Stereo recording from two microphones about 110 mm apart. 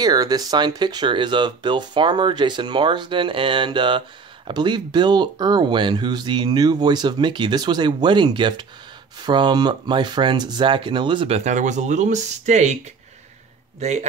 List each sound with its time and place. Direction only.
0.0 s speech: 35° right (ahead or behind)
11.3 s speech: 90° right
13.7 s speech: 90° right